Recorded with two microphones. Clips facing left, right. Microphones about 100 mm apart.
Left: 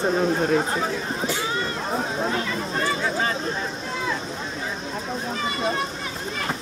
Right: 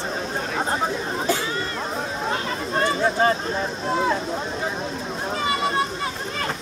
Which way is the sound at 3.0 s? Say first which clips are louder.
Right 5 dB; 40° right (ahead or behind).